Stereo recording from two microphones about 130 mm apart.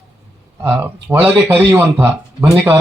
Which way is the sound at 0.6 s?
15° right (ahead or behind).